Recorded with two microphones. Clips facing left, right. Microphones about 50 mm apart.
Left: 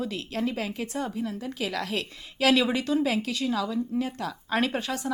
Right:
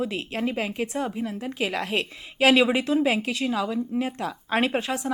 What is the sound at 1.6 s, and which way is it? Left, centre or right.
Speech, right.